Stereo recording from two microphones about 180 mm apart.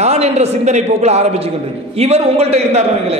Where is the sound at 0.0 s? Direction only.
35° right (ahead or behind).